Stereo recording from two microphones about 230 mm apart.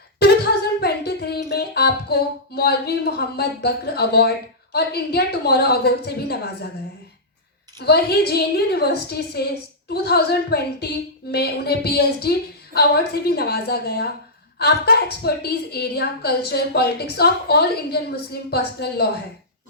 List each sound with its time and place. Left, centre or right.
0.8 s music: left
4.7 s a woman's voice: left
7.8 s a woman's voice: left